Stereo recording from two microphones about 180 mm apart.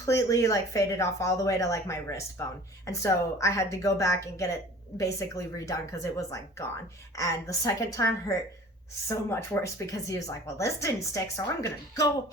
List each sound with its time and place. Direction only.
0.0 s speech: 20° left (ahead or behind)